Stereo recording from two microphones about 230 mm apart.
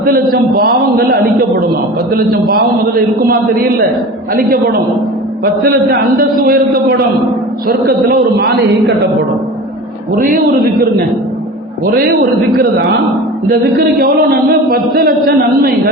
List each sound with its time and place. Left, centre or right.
0.0 s a man's voice: right
5.6 s a man's voice: right
7.7 s a man's voice: right
10.2 s a man's voice: right
12.5 s a man's voice: right